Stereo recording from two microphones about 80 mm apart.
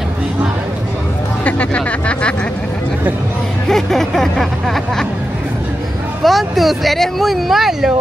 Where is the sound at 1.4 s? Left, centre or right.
Centre.